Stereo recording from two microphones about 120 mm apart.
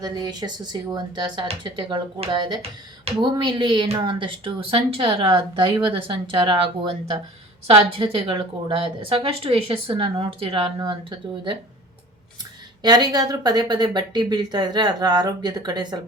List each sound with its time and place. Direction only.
0.0 s speech: 35° right (ahead or behind)
2.6 s a woman's voice: 50° right (ahead or behind)
7.9 s a woman's voice: 50° right (ahead or behind)
12.8 s speech: 35° right (ahead or behind)